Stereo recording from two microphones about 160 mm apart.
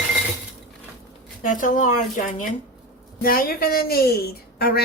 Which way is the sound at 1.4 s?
55° left (ahead or behind).